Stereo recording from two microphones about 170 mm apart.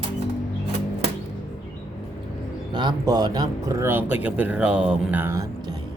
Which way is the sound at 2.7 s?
25° right (ahead or behind).